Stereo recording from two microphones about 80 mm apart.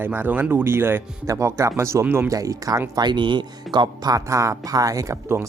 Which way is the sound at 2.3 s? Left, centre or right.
Right.